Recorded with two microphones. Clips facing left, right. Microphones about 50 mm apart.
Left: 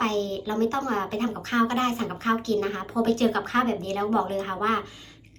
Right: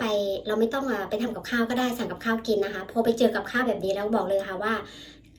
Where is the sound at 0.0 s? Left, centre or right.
Left.